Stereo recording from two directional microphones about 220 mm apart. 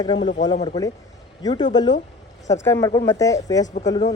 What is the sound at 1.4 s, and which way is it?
Speech, 20° left (ahead or behind).